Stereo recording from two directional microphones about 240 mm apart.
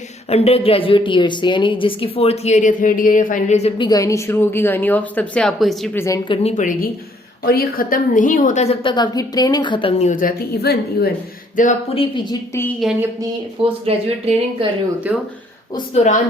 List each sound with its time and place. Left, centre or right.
0.3 s a woman's voice: left; by 6.1 s centre
6.2 s a woman's voice: left
6.6 s a woman's voice: left
12.1 s speech: centre
12.8 s speech: centre
13.6 s speech: right
15.1 s speech: centre